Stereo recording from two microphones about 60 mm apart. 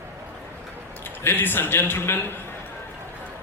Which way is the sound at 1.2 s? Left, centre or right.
Left.